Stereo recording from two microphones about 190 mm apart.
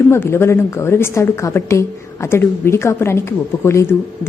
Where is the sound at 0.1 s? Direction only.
15° left (ahead or behind).